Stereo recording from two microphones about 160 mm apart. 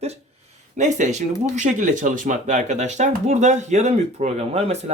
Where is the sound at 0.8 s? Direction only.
50° right (ahead or behind).